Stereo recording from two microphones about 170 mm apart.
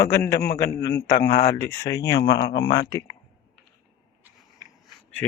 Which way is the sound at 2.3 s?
90° left.